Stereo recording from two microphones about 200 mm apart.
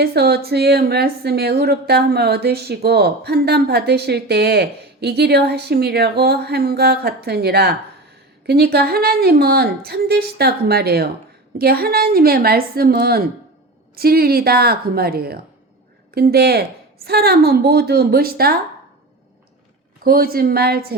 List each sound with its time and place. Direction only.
0.0 s a woman's voice: 50° right (ahead or behind)
20.1 s a woman's voice: 50° right (ahead or behind)